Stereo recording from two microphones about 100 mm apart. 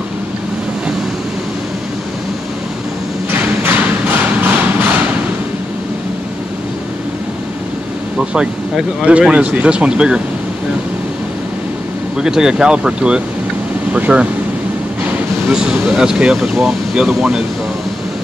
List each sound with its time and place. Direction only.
3.6 s a sound: 15° right (ahead or behind)
8.3 s speech: 10° right (ahead or behind)
12.2 s speech: 5° right (ahead or behind)
15.5 s speech: 5° right (ahead or behind)